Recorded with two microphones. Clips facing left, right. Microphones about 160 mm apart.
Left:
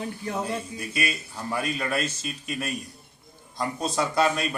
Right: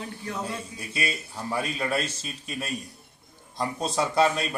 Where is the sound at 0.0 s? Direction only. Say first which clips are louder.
Left 3 dB; 25° left (ahead or behind).